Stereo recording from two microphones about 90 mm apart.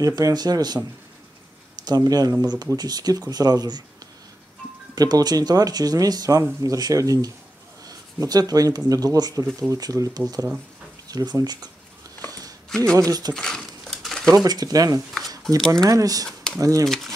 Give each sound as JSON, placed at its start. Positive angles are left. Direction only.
{"t": 0.0, "sound": "speech", "side_deg": -45}
{"t": 1.9, "sound": "speech", "side_deg": -45}
{"t": 4.9, "sound": "speech", "side_deg": -45}
{"t": 12.3, "sound": "a sound", "side_deg": -45}
{"t": 12.6, "sound": "a sound", "side_deg": 5}
{"t": 14.3, "sound": "speech", "side_deg": -45}
{"t": 16.8, "sound": "speech", "side_deg": 5}